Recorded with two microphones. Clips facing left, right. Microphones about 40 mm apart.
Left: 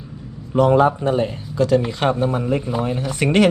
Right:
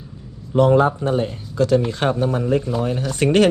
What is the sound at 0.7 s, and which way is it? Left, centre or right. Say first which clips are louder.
Speech: left 2 dB; left.